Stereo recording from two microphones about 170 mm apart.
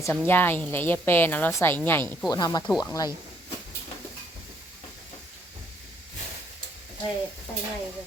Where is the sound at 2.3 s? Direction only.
20° left (ahead or behind).